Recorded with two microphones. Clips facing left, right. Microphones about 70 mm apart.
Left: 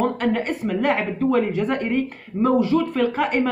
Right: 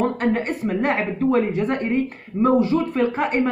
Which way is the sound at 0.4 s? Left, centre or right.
Right.